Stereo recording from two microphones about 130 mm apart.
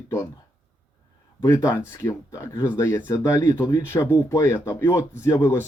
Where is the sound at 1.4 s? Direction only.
20° left (ahead or behind).